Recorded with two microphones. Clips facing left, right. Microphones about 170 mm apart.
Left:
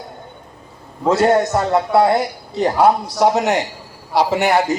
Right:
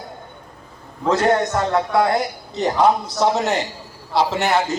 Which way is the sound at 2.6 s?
10° left (ahead or behind).